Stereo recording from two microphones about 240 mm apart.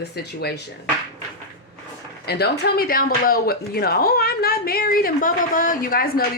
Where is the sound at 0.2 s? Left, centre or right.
Left.